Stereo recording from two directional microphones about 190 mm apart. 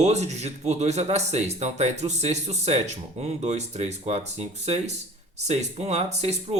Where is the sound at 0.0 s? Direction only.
35° right (ahead or behind).